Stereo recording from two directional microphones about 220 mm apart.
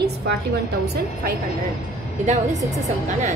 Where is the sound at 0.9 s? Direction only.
45° right (ahead or behind).